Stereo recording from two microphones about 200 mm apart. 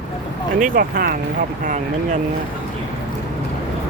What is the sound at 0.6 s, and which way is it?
Speech, 45° right (ahead or behind).